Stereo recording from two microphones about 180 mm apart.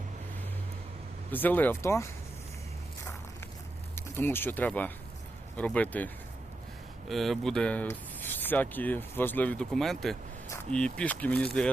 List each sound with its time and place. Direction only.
1.3 s speech: 10° left (ahead or behind)
3.9 s speech: 15° left (ahead or behind)
7.1 s speech: centre (ahead or behind)